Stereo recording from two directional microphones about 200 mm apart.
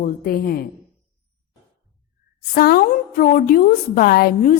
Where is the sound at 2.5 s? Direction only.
45° left (ahead or behind).